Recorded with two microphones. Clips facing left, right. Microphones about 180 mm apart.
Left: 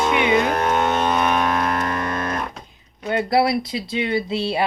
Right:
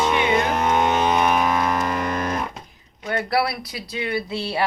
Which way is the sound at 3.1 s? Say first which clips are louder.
Left 4 dB; 20° left (ahead or behind).